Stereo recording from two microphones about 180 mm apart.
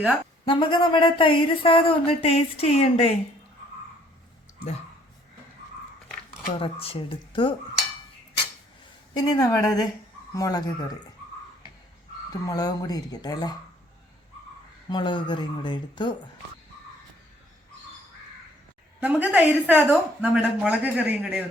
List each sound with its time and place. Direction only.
0.4 s speech: 25° left (ahead or behind)
6.5 s speech: 30° left (ahead or behind)
9.1 s speech: 20° left (ahead or behind)
12.3 s speech: 20° left (ahead or behind)
14.8 s speech: 25° left (ahead or behind)
18.9 s speech: 10° right (ahead or behind)